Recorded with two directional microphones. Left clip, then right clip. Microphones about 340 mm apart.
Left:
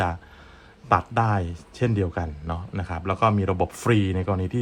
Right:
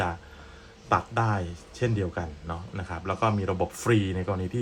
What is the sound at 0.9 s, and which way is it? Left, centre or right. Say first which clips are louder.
Speech: left 4 dB; left.